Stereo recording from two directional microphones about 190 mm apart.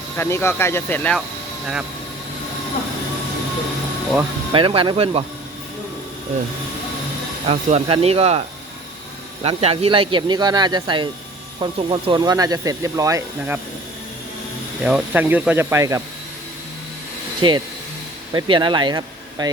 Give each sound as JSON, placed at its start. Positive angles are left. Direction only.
{"t": 0.2, "sound": "speech", "side_deg": 15}
{"t": 4.5, "sound": "speech", "side_deg": -25}
{"t": 7.4, "sound": "speech", "side_deg": -30}
{"t": 14.8, "sound": "speech", "side_deg": -5}
{"t": 17.4, "sound": "speech", "side_deg": -25}